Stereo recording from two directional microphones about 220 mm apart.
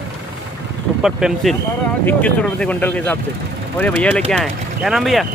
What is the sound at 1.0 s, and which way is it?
Speech, centre (ahead or behind).